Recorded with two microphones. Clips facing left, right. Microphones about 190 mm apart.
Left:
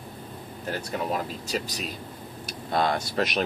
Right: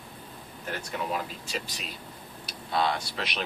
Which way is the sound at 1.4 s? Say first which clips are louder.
Left 6 dB; 40° left (ahead or behind).